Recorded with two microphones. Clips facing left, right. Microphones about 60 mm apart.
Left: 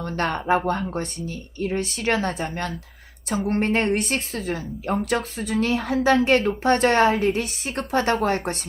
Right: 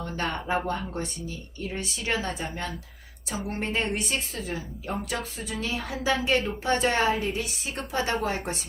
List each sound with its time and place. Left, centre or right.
0.2 s a woman's voice: left